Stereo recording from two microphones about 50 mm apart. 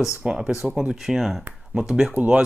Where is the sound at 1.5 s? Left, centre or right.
Centre.